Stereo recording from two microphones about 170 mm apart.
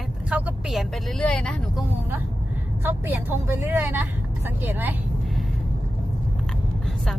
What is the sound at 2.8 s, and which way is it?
Speech, 10° right (ahead or behind).